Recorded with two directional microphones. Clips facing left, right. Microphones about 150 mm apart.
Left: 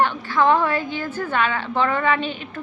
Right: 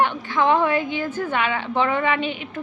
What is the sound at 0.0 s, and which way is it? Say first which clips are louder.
A woman's voice: left 1 dB; 20° right (ahead or behind).